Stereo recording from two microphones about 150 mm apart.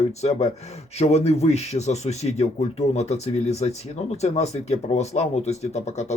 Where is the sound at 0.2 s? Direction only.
45° left (ahead or behind).